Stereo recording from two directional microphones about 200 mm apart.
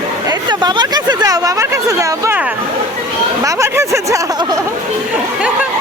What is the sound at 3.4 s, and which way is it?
Speech, 15° right (ahead or behind).